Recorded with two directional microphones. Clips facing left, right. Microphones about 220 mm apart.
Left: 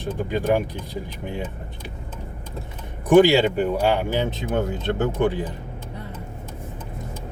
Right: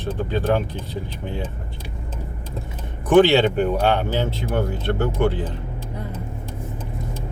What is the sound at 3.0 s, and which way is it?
Speech, 10° left (ahead or behind).